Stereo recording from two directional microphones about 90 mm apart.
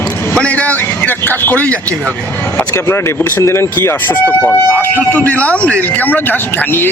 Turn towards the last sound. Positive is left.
turn(degrees=20)  # may be behind; listen again after turning